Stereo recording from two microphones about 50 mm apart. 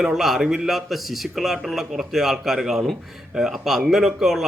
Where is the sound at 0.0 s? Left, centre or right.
Centre.